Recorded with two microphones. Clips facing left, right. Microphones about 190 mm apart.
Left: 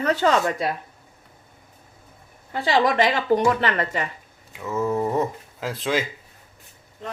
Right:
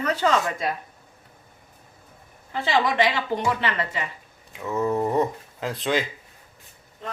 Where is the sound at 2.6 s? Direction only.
45° left (ahead or behind).